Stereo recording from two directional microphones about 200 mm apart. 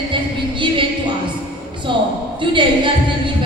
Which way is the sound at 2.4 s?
25° right (ahead or behind).